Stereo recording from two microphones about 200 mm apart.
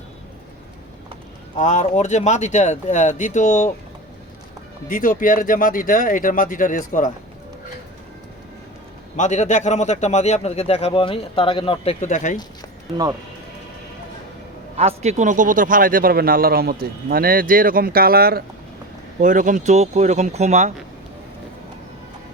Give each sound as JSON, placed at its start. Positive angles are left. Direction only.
{"t": 1.5, "sound": "a man's voice", "side_deg": 35}
{"t": 4.9, "sound": "speech", "side_deg": 45}
{"t": 9.1, "sound": "a man's voice", "side_deg": 35}
{"t": 14.8, "sound": "a man's voice", "side_deg": -35}